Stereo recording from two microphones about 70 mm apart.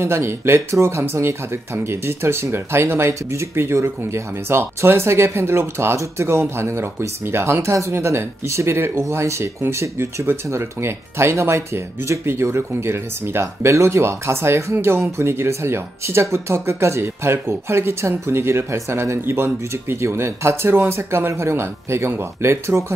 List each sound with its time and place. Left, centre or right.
0.0 s speech: right